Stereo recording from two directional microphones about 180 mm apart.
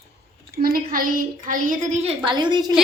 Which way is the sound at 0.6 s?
55° right (ahead or behind).